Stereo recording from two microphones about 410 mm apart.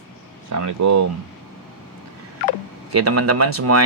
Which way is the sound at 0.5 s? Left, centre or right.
Right.